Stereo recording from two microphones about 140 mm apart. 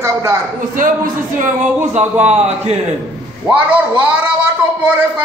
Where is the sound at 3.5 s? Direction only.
10° right (ahead or behind).